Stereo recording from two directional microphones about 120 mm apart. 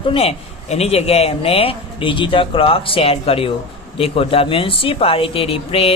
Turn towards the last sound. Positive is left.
turn(degrees=55)  # may be behind; listen again after turning